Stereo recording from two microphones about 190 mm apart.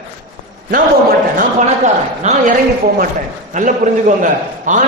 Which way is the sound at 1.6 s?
35° right (ahead or behind).